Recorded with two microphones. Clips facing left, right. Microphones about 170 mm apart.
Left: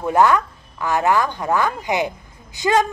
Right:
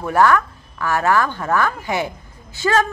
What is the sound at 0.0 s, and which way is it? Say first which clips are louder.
A woman's voice: even; 20° left (ahead or behind).